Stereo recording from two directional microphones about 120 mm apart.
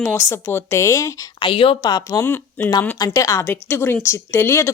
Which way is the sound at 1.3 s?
45° left (ahead or behind).